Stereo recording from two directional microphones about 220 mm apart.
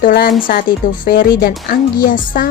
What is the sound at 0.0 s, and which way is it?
Speech, 40° left (ahead or behind).